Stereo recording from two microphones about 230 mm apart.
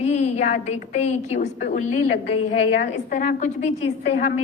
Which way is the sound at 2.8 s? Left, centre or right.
Left.